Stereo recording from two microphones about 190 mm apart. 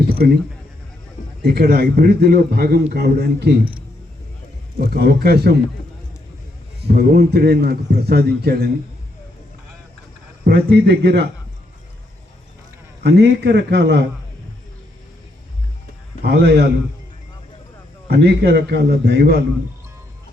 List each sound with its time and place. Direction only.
1.5 s a man's voice: 55° right (ahead or behind)
4.8 s a man's voice: 55° right (ahead or behind)
6.8 s a man's voice: 55° right (ahead or behind)
10.4 s a man's voice: 60° right (ahead or behind)
13.0 s a man's voice: 60° right (ahead or behind)
16.2 s a man's voice: 60° right (ahead or behind)
18.1 s a man's voice: 60° right (ahead or behind)